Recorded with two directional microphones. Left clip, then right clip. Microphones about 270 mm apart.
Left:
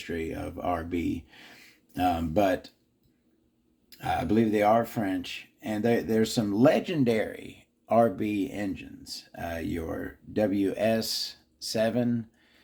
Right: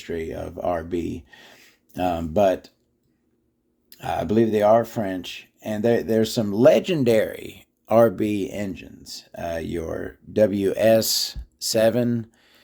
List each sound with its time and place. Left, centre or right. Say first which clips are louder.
0.0 s speech: right 4 dB; right
3.8 s speech: right 3 dB; right